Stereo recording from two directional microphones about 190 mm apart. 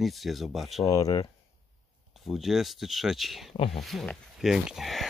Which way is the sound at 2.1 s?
Centre (ahead or behind).